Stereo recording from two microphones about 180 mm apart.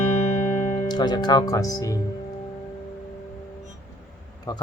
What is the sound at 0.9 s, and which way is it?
Speech, 25° left (ahead or behind).